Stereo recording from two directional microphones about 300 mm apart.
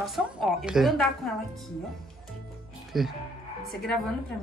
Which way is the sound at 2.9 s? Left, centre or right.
Centre.